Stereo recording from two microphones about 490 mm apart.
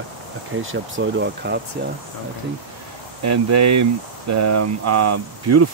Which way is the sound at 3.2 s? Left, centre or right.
Right.